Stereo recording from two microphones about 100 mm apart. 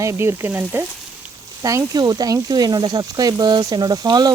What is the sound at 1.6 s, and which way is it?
Speech, 35° right (ahead or behind).